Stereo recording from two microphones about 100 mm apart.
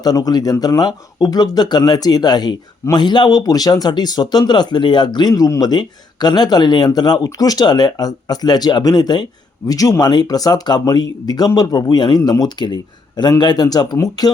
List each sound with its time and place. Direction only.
0.0 s speech: 40° left (ahead or behind)
5.3 s speech: 35° left (ahead or behind)